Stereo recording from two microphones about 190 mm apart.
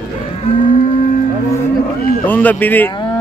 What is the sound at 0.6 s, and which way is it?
Moo, 40° left (ahead or behind).